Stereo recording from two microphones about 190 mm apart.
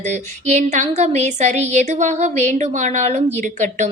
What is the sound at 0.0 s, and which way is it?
A woman's voice, 40° right (ahead or behind).